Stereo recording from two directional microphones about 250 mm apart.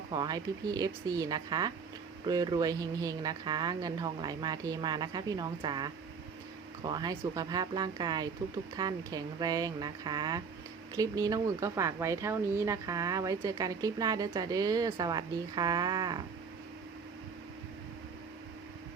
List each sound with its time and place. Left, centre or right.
0.1 s speech: centre